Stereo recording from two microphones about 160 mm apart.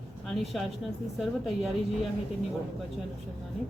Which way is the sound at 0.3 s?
Centre (ahead or behind).